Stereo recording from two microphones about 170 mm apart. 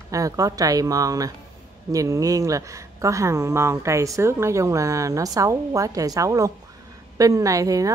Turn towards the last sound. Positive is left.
turn(degrees=-20)  # may be behind; listen again after turning